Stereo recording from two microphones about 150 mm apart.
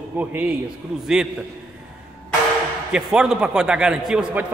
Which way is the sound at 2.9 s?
5° right (ahead or behind).